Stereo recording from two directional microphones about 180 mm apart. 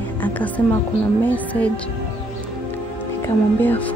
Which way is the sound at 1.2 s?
10° left (ahead or behind).